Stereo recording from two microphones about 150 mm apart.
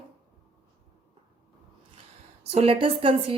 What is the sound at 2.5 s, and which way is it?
Speech, 40° right (ahead or behind).